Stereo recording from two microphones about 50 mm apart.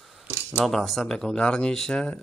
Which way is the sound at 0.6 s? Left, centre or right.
Centre.